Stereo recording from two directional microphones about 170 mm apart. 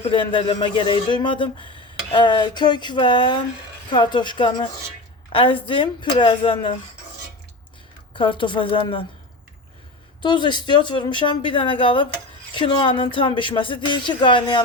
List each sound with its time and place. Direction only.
0.0 s speech: 30° left (ahead or behind)
8.1 s speech: 30° left (ahead or behind)
10.2 s speech: 25° left (ahead or behind)